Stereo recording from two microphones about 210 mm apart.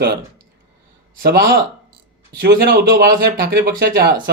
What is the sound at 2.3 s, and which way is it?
Speech, 45° right (ahead or behind).